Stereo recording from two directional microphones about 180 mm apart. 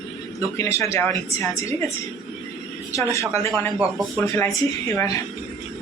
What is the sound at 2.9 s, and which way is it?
Speech, 15° left (ahead or behind).